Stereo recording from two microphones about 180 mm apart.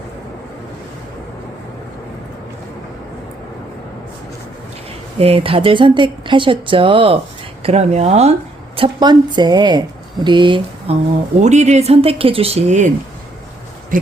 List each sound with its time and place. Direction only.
5.2 s speech: 30° right (ahead or behind)
11.3 s speech: 40° right (ahead or behind)
13.9 s speech: 45° right (ahead or behind)